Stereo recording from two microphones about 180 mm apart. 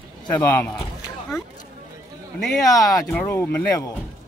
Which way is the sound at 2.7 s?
20° left (ahead or behind).